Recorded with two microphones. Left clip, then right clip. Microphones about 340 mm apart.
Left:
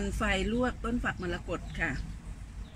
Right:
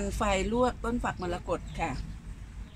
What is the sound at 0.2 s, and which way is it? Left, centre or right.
A woman's voice, centre.